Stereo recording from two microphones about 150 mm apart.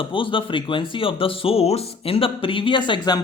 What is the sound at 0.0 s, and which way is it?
Speech, 35° left (ahead or behind).